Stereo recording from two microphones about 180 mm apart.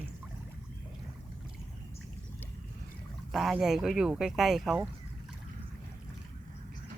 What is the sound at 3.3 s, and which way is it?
Speech, centre (ahead or behind).